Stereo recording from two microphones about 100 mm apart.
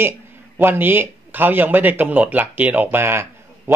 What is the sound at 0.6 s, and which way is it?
Speech, 20° right (ahead or behind).